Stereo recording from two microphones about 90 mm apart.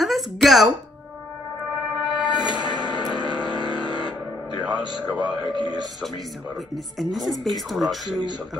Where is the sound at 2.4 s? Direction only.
55° right (ahead or behind).